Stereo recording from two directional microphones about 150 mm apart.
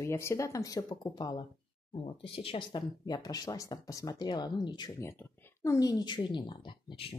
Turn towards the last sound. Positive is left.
turn(degrees=35)  # may be behind; listen again after turning